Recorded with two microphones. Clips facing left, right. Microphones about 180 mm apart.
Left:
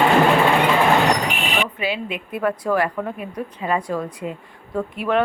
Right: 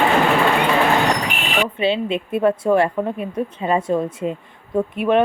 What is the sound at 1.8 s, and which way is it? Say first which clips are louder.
A woman's voice: right 6 dB; 25° right (ahead or behind).